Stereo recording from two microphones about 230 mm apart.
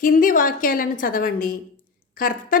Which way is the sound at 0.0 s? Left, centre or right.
Left.